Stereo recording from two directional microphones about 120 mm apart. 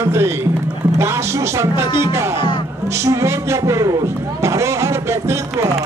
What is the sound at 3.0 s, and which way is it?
A man's voice, 25° right (ahead or behind).